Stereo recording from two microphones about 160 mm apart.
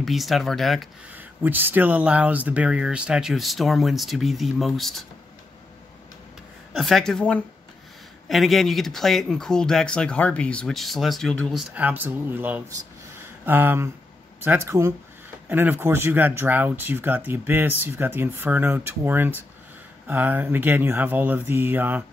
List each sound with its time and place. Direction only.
0.0 s speech: centre (ahead or behind)
1.1 s speech: 10° right (ahead or behind)
6.7 s speech: centre (ahead or behind)
11.7 s speech: 10° right (ahead or behind)